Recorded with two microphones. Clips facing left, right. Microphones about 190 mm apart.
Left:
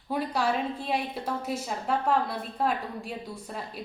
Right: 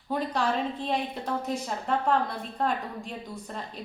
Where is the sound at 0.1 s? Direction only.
10° left (ahead or behind).